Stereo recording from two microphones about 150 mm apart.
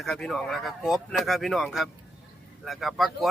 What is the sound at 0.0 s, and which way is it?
Speech, centre (ahead or behind).